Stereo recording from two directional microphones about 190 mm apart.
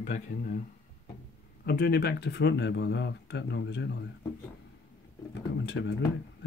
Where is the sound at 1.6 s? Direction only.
55° left (ahead or behind).